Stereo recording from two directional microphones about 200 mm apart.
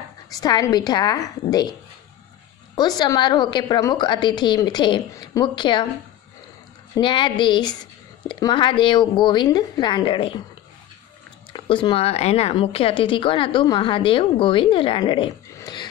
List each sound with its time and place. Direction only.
0.3 s a woman's voice: 20° left (ahead or behind)
3.0 s a woman's voice: 20° left (ahead or behind)
7.0 s a woman's voice: 25° left (ahead or behind)
11.5 s a woman's voice: 25° left (ahead or behind)